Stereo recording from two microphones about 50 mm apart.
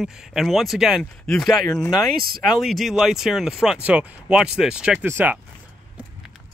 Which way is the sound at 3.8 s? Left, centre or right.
Right.